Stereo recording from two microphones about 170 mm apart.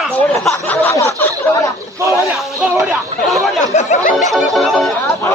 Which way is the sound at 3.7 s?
40° left (ahead or behind).